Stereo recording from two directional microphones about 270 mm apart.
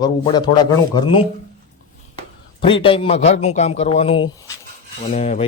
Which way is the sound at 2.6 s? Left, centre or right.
Centre.